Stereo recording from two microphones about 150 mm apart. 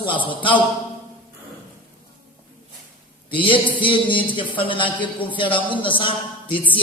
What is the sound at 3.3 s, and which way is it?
A man's voice, 35° left (ahead or behind).